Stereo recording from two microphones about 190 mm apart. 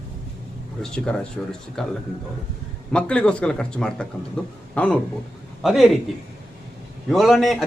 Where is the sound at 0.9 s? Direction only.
5° left (ahead or behind).